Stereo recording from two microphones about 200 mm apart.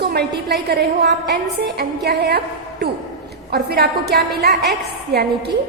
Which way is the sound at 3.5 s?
50° right (ahead or behind).